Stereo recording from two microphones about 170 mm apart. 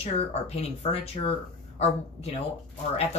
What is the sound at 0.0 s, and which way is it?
Speech, 35° left (ahead or behind).